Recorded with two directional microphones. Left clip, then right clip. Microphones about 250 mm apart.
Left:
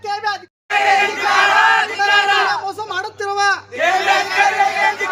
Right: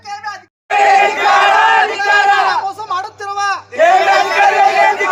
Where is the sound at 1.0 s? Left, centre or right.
Right.